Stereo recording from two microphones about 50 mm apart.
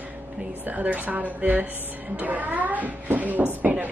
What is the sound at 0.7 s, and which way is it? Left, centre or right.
Speech, right.